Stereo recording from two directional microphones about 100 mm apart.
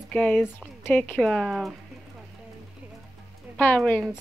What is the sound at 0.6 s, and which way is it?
Speech, 20° left (ahead or behind).